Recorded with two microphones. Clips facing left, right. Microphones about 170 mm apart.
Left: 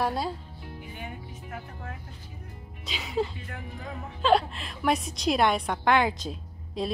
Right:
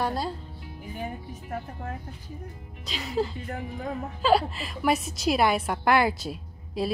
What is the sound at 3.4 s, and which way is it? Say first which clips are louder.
Speech: right 6 dB; 40° right (ahead or behind).